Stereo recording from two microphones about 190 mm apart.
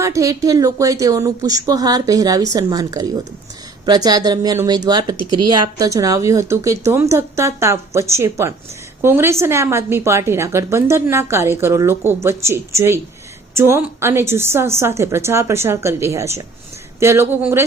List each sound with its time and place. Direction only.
0.0 s a woman's voice: 15° right (ahead or behind)